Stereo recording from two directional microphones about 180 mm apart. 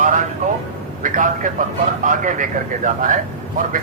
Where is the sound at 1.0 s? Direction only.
45° right (ahead or behind).